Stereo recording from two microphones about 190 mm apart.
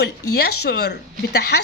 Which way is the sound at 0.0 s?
60° left (ahead or behind).